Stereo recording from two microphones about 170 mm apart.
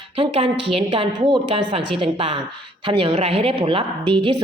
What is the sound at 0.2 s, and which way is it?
A woman's voice, 30° right (ahead or behind).